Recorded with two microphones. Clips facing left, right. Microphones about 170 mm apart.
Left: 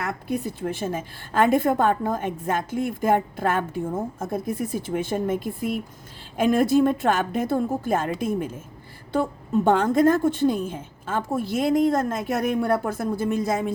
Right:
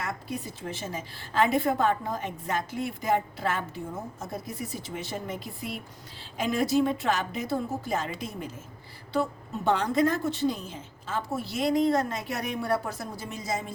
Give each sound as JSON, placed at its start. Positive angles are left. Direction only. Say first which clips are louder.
{"t": 0.0, "sound": "a woman's voice", "louder": "left 7 dB", "side_deg": 60}
{"t": 9.6, "sound": "a woman's voice", "louder": "left 5 dB", "side_deg": 50}